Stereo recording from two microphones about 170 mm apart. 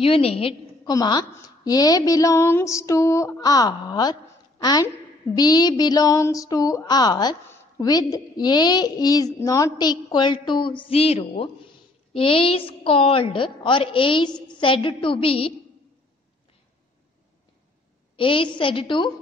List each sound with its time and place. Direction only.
0.0 s a woman's voice: 35° left (ahead or behind)
0.9 s a woman's voice: 25° left (ahead or behind)
18.1 s a woman's voice: 30° left (ahead or behind)